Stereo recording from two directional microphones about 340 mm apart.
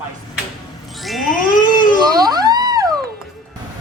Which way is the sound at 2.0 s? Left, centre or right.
Centre.